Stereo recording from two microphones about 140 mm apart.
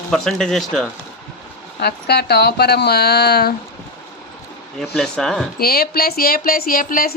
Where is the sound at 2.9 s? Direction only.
90° left.